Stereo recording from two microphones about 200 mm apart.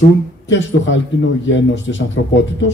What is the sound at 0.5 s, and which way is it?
Speech, 65° left (ahead or behind).